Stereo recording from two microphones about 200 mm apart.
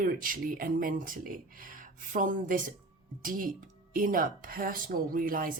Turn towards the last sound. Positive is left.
turn(degrees=-45)  # may be behind; listen again after turning